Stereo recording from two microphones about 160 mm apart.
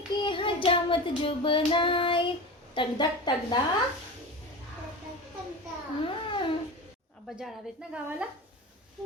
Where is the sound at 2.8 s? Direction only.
30° left (ahead or behind).